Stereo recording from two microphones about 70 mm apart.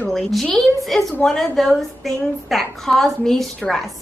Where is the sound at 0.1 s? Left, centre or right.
Centre.